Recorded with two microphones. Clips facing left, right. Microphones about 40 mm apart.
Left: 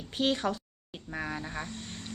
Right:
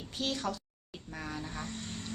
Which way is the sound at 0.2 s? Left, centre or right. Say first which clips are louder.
Left 6 dB; left.